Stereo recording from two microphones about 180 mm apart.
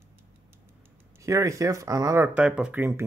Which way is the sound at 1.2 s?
15° right (ahead or behind).